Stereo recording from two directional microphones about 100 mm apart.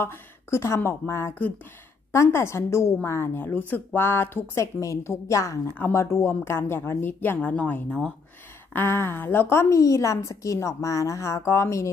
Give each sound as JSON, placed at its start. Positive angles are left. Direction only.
{"t": 0.0, "sound": "a woman's voice", "side_deg": 25}